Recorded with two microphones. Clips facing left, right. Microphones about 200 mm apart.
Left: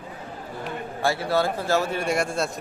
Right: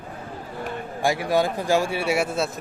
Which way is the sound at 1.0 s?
15° right (ahead or behind).